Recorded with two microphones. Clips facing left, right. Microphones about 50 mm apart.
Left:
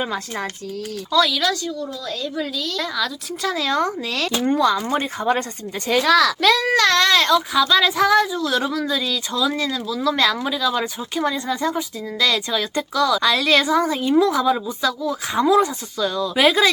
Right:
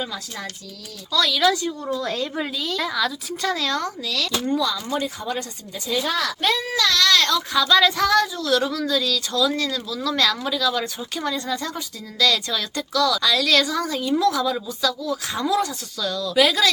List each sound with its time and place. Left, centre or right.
0.0 s speech: left
1.1 s speech: centre
1.9 s speech: right
2.6 s speech: centre
3.7 s a woman's voice: left
4.4 s speech: left
5.9 s a child's voice: left
6.7 s speech: left
7.0 s a woman's voice: centre